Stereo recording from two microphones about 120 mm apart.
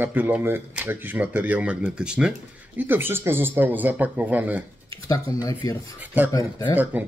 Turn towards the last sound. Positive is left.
turn(degrees=-15)  # may be behind; listen again after turning